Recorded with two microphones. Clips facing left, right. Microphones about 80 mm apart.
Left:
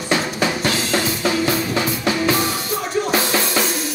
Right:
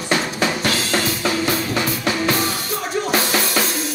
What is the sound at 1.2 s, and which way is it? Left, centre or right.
Music, centre.